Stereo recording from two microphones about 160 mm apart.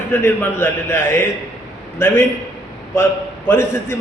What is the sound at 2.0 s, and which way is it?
Speech, 15° left (ahead or behind).